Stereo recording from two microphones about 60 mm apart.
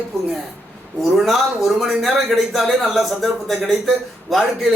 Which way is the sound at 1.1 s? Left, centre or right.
Centre.